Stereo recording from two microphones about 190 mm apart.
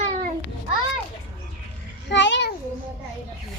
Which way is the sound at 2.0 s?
70° left (ahead or behind).